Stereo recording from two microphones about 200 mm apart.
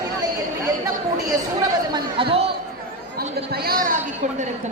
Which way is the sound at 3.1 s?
50° right (ahead or behind).